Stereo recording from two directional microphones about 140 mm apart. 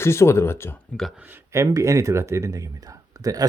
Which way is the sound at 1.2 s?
15° right (ahead or behind).